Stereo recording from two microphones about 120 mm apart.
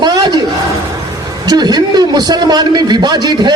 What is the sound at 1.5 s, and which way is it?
A man's voice, 35° right (ahead or behind).